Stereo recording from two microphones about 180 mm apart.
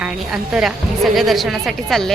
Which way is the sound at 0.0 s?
5° right (ahead or behind).